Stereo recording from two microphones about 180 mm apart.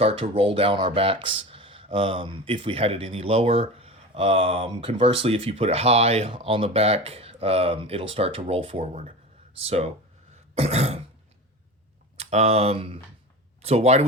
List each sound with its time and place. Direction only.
0.0 s speech: 30° right (ahead or behind)
12.1 s speech: 35° right (ahead or behind)